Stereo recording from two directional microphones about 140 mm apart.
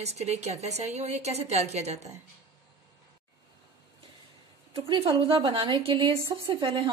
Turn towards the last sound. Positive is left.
turn(degrees=-35)  # may be behind; listen again after turning